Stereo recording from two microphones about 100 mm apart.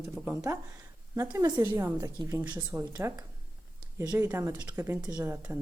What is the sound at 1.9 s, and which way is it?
A woman's voice, 35° right (ahead or behind).